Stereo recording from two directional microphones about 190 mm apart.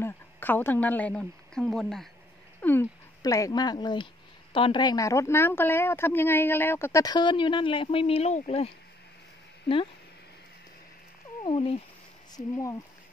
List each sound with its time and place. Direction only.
0.0 s a woman's voice: 10° left (ahead or behind)
2.6 s speech: 10° left (ahead or behind); by 8.7 s 30° left (ahead or behind)
11.4 s speech: 30° left (ahead or behind)
12.3 s speech: 20° left (ahead or behind)